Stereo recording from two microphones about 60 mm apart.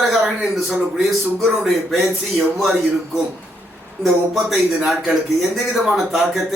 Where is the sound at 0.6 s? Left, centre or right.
Centre.